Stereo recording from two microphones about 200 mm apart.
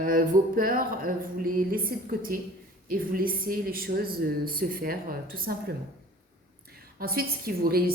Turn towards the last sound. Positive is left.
turn(degrees=-50)  # may be behind; listen again after turning